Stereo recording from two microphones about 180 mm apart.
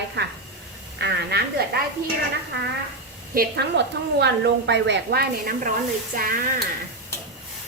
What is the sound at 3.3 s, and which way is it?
A woman's voice, 60° right (ahead or behind).